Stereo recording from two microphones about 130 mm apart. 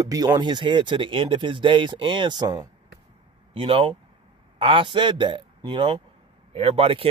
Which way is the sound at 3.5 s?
45° right (ahead or behind).